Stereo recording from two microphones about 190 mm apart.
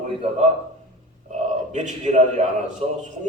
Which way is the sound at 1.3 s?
40° right (ahead or behind).